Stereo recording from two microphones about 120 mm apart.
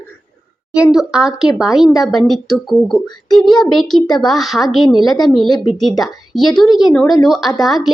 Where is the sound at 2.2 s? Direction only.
35° left (ahead or behind).